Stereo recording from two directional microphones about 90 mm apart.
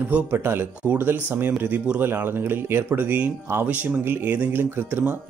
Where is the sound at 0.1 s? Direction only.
25° right (ahead or behind).